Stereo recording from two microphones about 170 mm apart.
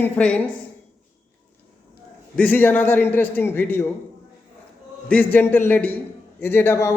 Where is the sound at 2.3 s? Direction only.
10° left (ahead or behind).